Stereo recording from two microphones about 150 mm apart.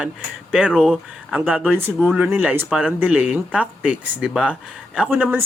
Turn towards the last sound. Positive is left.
turn(degrees=-10)  # may be behind; listen again after turning